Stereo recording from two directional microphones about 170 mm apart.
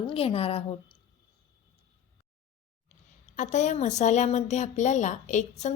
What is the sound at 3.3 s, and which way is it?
A woman's voice, 45° left (ahead or behind).